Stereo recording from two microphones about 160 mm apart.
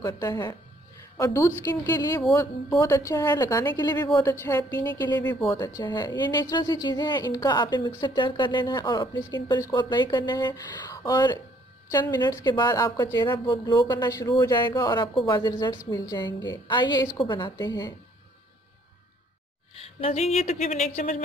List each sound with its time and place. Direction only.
0.0 s a woman's voice: 20° left (ahead or behind)
5.8 s a woman's voice: 25° left (ahead or behind)
19.7 s speech: 40° left (ahead or behind)